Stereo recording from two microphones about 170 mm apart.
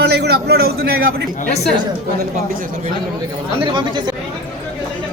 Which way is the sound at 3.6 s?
25° right (ahead or behind).